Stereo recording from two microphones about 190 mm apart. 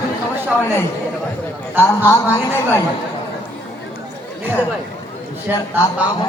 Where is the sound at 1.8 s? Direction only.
10° left (ahead or behind).